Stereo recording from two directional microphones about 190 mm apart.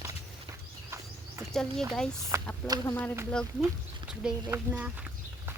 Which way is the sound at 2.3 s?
15° right (ahead or behind).